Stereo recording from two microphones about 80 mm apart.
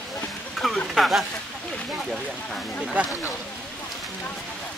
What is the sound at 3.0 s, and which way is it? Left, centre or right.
Speech, centre.